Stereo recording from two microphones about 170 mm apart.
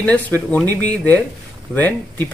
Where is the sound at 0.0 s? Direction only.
10° left (ahead or behind).